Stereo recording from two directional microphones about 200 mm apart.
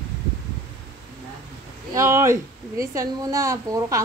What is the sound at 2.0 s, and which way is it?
A woman's voice, 15° right (ahead or behind).